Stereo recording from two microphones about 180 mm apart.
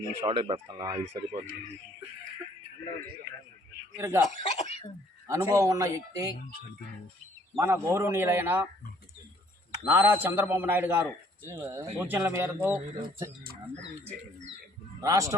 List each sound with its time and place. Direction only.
0.2 s speech: 30° right (ahead or behind)
3.9 s a man's voice: 15° right (ahead or behind)
4.3 s speech: 40° left (ahead or behind)
5.3 s speech: 20° right (ahead or behind)
7.5 s a man's voice: 15° right (ahead or behind)
9.9 s a man's voice: 10° right (ahead or behind)
15.0 s speech: 20° right (ahead or behind)